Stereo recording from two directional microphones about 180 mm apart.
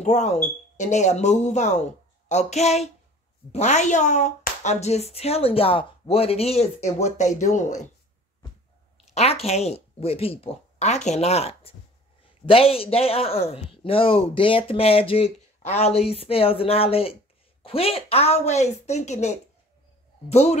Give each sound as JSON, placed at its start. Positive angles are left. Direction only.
{"t": 0.0, "sound": "speech", "side_deg": 40}
{"t": 9.1, "sound": "speech", "side_deg": 35}